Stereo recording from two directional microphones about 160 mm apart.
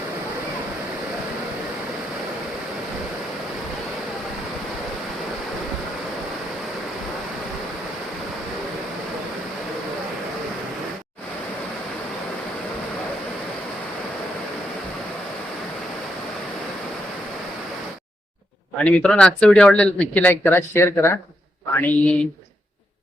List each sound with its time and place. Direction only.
18.9 s speech: 5° left (ahead or behind)